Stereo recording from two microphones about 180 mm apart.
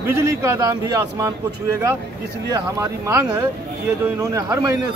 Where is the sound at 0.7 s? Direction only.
20° right (ahead or behind).